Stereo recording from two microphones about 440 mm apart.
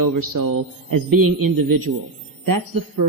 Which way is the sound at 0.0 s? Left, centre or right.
Right.